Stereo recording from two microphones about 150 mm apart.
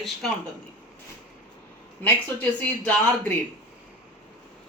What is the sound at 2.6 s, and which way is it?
Speech, 10° left (ahead or behind).